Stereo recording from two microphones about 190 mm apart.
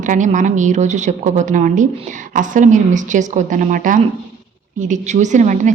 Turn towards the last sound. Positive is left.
turn(degrees=-40)  # may be behind; listen again after turning